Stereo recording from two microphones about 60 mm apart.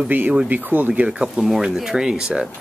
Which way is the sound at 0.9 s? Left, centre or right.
Centre.